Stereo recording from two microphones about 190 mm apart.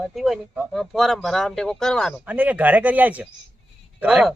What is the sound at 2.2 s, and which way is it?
Speech, 10° right (ahead or behind).